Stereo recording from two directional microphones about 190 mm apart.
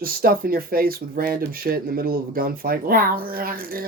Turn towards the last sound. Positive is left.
turn(degrees=-50)  # may be behind; listen again after turning